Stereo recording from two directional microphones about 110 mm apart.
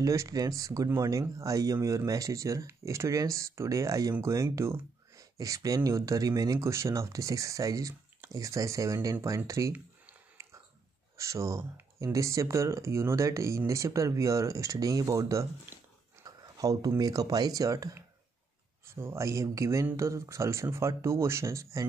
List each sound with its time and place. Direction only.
0.0 s speech: 30° right (ahead or behind)
11.1 s speech: 30° right (ahead or behind)